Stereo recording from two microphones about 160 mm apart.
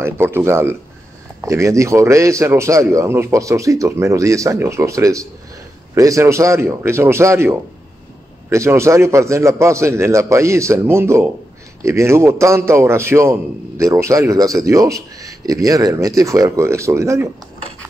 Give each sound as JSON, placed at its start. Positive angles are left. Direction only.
{"t": 0.0, "sound": "a man's voice", "side_deg": -15}